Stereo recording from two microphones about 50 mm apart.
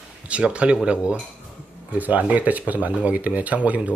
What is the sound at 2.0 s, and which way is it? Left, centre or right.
Speech, right.